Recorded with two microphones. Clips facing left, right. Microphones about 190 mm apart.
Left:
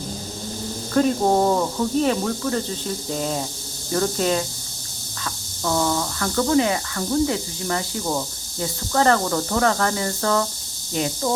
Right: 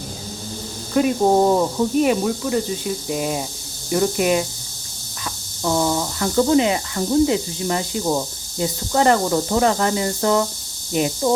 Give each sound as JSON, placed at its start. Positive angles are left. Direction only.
{"t": 0.9, "sound": "speech", "side_deg": -15}